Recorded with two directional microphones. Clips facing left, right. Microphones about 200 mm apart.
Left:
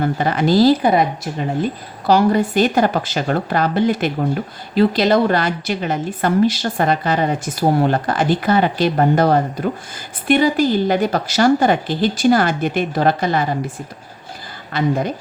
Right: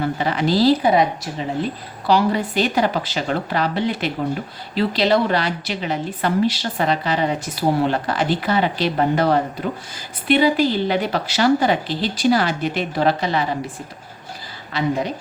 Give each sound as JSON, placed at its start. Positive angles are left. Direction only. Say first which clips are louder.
{"t": 0.0, "sound": "a woman's voice", "louder": "left 3 dB", "side_deg": 50}
{"t": 14.7, "sound": "a woman's voice", "louder": "left 3 dB", "side_deg": 50}